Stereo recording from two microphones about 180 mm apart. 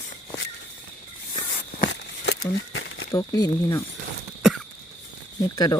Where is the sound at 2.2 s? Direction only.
80° left.